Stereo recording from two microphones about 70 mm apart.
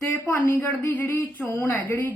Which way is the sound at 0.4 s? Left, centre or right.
Left.